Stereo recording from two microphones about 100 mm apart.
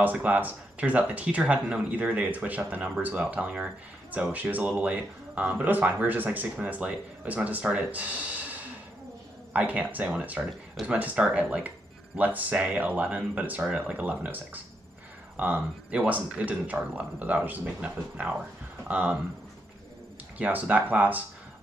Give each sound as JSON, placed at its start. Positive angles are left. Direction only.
{"t": 0.0, "sound": "speech", "side_deg": -15}
{"t": 20.3, "sound": "speech", "side_deg": -15}